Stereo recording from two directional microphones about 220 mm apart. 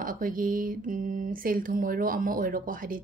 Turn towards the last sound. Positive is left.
turn(degrees=-40)  # may be behind; listen again after turning